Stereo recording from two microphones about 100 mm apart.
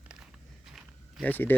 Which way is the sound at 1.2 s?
20° left (ahead or behind).